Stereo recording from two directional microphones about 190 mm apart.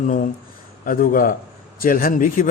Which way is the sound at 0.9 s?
45° left (ahead or behind).